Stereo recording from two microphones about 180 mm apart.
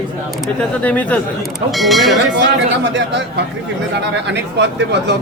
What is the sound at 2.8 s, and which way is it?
Speech, 80° right.